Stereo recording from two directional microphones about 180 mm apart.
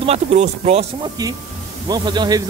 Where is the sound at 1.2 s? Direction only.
20° right (ahead or behind).